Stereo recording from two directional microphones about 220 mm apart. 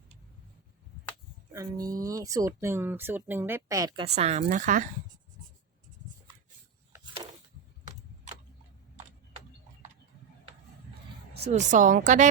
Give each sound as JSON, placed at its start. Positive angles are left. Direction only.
{"t": 1.5, "sound": "a woman's voice", "side_deg": -15}
{"t": 6.9, "sound": "a sound", "side_deg": -20}
{"t": 11.4, "sound": "a woman's voice", "side_deg": -35}